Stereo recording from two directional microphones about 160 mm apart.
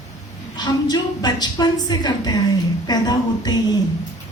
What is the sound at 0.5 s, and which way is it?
A woman's voice, 25° left (ahead or behind).